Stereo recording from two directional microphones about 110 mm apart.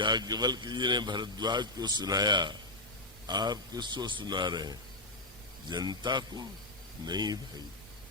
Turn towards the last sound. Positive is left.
turn(degrees=-40)  # may be behind; listen again after turning